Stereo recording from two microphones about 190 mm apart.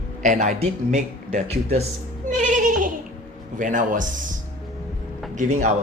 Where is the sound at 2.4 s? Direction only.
45° right (ahead or behind).